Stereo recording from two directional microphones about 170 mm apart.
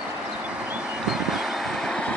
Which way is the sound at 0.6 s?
5° right (ahead or behind).